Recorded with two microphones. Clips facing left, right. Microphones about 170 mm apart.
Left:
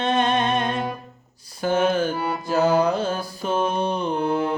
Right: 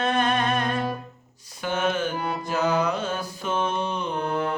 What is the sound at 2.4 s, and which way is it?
Music, 35° left (ahead or behind).